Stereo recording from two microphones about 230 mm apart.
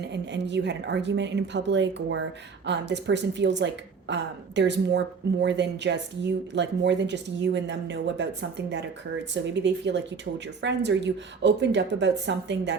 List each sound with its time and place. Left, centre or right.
0.0 s a woman's voice: right